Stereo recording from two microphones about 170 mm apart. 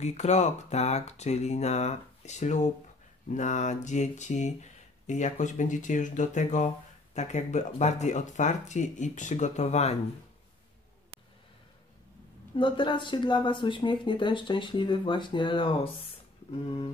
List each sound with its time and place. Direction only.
0.0 s speech: 40° left (ahead or behind)
12.5 s speech: 30° left (ahead or behind)